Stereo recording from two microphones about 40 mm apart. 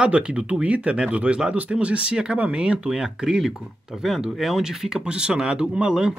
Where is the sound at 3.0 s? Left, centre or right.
Centre.